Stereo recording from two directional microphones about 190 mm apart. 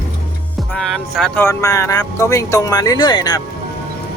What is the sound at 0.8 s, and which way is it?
Speech, centre (ahead or behind).